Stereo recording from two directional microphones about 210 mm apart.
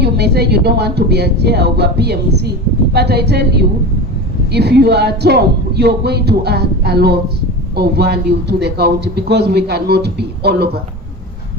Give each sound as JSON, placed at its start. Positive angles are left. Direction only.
{"t": 0.0, "sound": "a man's voice", "side_deg": -50}